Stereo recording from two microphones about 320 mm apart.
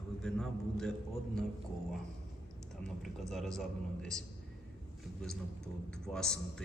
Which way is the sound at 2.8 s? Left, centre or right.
Centre.